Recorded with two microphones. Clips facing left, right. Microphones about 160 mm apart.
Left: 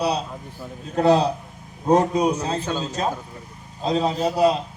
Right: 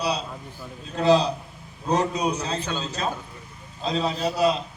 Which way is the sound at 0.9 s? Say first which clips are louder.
Left 2 dB; 55° left (ahead or behind).